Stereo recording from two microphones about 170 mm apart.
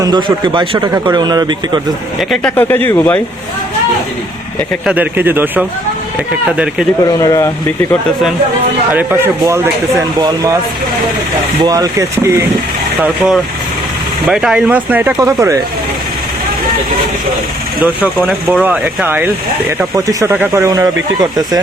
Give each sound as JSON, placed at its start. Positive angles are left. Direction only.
{"t": 0.0, "sound": "a man's voice", "side_deg": -25}
{"t": 2.3, "sound": "speech", "side_deg": 10}
{"t": 4.9, "sound": "speech", "side_deg": -10}
{"t": 7.2, "sound": "speech", "side_deg": 20}
{"t": 8.9, "sound": "a man's voice", "side_deg": -10}
{"t": 11.6, "sound": "a man's voice", "side_deg": -20}
{"t": 13.0, "sound": "speech", "side_deg": -5}
{"t": 18.0, "sound": "a man's voice", "side_deg": -5}